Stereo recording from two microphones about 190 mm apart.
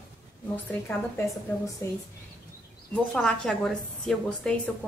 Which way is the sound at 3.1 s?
5° left (ahead or behind).